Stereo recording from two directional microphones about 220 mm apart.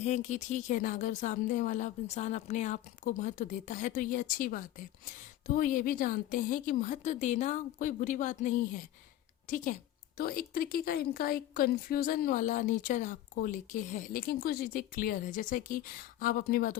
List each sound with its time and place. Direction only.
0.0 s a woman's voice: 30° left (ahead or behind)
10.2 s a woman's voice: 40° left (ahead or behind)